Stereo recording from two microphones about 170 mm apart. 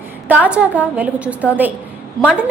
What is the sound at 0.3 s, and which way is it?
A woman's voice, 10° right (ahead or behind).